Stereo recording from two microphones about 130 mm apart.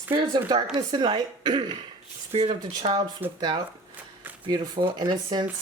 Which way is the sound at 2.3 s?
50° right (ahead or behind).